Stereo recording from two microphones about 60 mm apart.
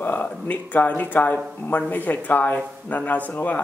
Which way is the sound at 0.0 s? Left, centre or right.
Left.